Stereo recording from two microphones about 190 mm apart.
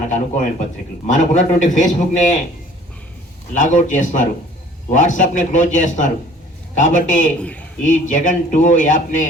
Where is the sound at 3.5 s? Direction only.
40° left (ahead or behind).